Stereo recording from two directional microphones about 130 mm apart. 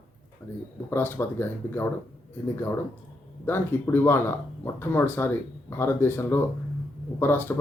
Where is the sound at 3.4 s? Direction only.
15° left (ahead or behind).